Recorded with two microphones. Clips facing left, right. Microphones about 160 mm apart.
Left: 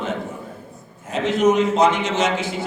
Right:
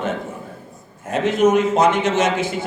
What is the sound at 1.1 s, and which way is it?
A man's voice, 50° right (ahead or behind).